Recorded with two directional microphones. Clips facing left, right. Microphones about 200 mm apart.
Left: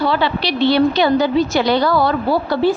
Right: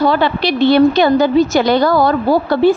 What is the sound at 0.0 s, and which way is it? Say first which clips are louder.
A woman's voice: right 4 dB; 50° right (ahead or behind).